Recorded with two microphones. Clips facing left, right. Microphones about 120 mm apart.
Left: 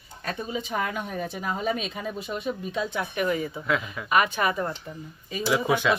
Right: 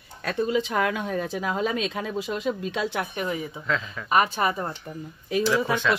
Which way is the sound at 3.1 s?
20° right (ahead or behind).